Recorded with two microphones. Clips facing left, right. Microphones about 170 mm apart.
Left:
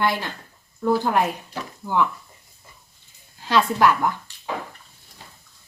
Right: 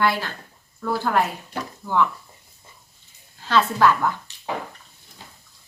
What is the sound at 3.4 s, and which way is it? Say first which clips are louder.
Speech: even; 15° left (ahead or behind).